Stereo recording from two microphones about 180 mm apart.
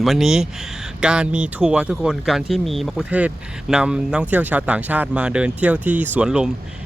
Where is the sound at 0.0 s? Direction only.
Centre (ahead or behind).